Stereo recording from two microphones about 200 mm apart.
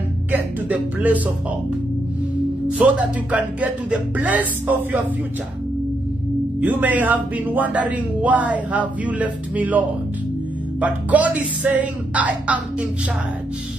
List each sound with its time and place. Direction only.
0.3 s speech: 10° right (ahead or behind)
2.8 s speech: 5° right (ahead or behind)
6.6 s speech: 10° right (ahead or behind)